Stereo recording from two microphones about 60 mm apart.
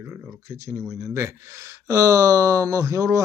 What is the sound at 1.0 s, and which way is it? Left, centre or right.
Speech, right.